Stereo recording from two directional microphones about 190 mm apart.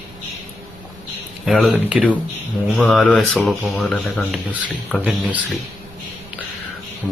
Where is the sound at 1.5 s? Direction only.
Centre (ahead or behind).